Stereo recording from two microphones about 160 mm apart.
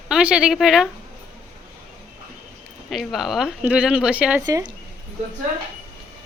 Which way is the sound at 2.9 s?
Centre (ahead or behind).